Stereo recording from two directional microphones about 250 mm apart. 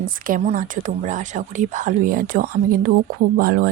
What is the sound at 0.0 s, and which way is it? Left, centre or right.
Speech, right.